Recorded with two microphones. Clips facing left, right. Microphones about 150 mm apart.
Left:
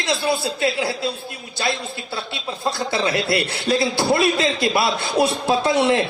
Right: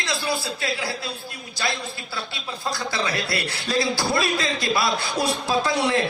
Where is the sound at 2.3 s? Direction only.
25° left (ahead or behind).